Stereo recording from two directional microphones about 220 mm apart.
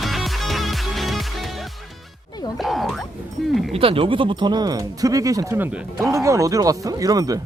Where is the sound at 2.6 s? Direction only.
Centre (ahead or behind).